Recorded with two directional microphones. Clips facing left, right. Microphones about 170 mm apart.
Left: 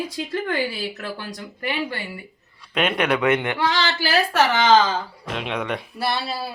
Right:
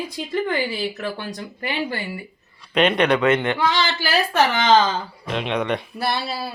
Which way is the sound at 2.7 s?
5° left (ahead or behind).